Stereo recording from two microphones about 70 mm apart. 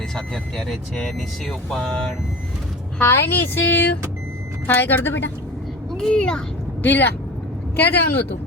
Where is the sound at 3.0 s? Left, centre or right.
Left.